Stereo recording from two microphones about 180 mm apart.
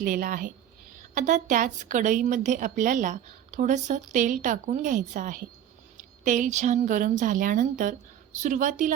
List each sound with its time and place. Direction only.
0.0 s a woman's voice: 50° right (ahead or behind)